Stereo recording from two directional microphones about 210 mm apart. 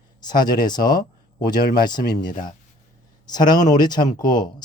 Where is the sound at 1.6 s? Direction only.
45° left (ahead or behind).